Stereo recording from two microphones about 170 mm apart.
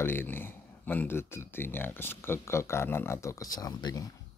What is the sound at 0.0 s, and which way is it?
A man's voice, 10° left (ahead or behind).